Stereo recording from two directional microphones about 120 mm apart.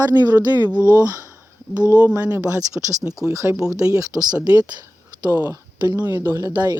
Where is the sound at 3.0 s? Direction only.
5° right (ahead or behind).